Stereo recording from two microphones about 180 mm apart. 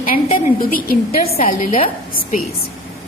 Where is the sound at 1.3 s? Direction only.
35° left (ahead or behind).